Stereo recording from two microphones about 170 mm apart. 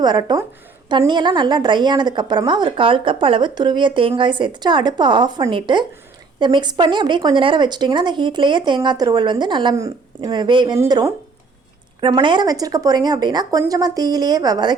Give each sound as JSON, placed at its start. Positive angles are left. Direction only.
{"t": 0.0, "sound": "a woman's voice", "side_deg": -25}